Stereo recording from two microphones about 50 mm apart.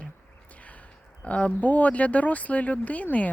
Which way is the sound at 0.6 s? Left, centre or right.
Left.